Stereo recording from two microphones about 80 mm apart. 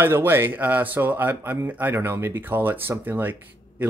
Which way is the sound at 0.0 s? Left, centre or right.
Right.